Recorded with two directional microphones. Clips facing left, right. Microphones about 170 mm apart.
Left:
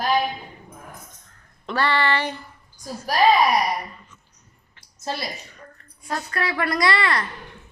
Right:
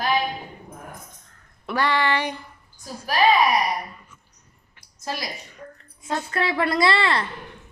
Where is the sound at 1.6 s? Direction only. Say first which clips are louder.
Even; 10° right (ahead or behind).